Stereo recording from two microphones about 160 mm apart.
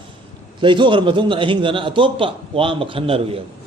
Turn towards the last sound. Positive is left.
turn(degrees=-35)  # may be behind; listen again after turning